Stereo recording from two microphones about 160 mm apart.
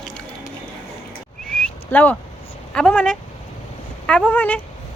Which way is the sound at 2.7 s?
5° left (ahead or behind).